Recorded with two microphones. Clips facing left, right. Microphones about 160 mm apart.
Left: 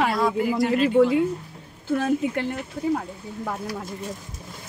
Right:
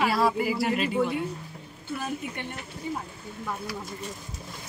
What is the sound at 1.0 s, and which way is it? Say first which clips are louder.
A woman's voice: left 9 dB; 90° left.